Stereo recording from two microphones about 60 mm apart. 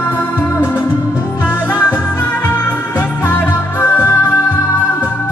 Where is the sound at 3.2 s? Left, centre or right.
Left.